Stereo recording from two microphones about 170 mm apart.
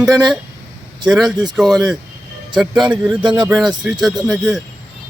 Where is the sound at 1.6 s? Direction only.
20° right (ahead or behind).